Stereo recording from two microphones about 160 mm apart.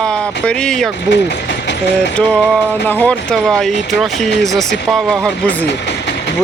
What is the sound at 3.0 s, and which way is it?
Speech, 5° left (ahead or behind).